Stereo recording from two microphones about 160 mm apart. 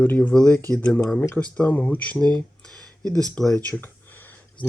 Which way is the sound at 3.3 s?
5° left (ahead or behind).